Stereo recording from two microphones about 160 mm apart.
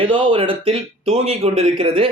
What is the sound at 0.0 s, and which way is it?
Speech, 30° right (ahead or behind).